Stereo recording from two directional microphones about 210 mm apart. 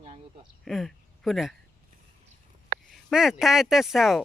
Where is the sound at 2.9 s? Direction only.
Centre (ahead or behind).